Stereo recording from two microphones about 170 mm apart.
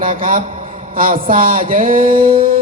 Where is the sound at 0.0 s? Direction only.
55° right (ahead or behind).